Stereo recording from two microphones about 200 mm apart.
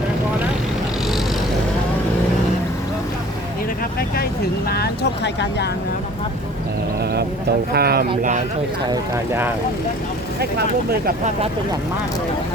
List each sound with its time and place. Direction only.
4.7 s speech: 55° left (ahead or behind)
7.7 s speech: 50° right (ahead or behind)
8.9 s speech: 10° right (ahead or behind)